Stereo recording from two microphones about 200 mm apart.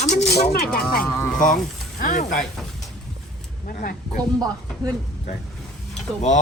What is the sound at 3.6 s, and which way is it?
Speech, 45° left (ahead or behind).